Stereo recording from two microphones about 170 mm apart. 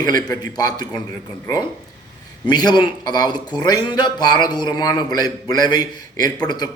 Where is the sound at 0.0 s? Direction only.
25° left (ahead or behind).